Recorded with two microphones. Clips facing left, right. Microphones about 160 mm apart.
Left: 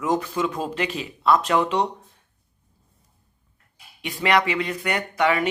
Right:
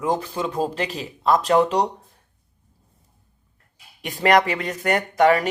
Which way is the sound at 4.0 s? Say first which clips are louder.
Right 4 dB; 45° right (ahead or behind).